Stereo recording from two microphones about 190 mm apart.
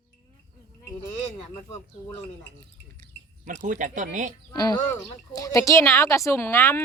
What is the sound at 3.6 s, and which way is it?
Speech, 40° right (ahead or behind).